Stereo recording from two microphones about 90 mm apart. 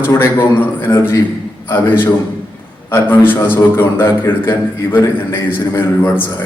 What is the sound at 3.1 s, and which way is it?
Speech, 20° left (ahead or behind).